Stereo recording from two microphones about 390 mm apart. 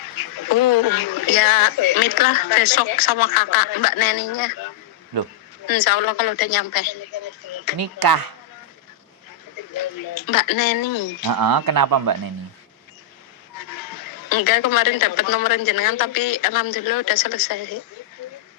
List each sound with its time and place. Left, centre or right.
0.0 s speech: left
7.8 s speech: right
9.7 s speech: left
11.3 s speech: right
13.6 s speech: left